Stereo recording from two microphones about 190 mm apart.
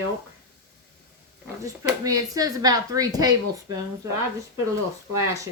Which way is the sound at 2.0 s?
20° right (ahead or behind).